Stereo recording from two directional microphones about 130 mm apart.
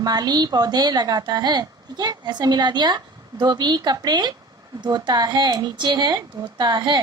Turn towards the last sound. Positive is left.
turn(degrees=-35)  # may be behind; listen again after turning